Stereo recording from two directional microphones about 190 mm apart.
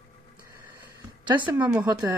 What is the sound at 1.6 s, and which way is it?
Speech, 10° right (ahead or behind).